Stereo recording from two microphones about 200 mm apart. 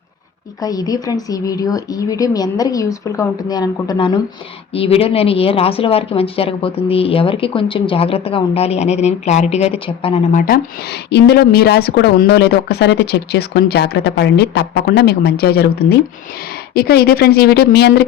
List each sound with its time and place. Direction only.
0.6 s speech: 20° left (ahead or behind)
10.3 s speech: 45° left (ahead or behind)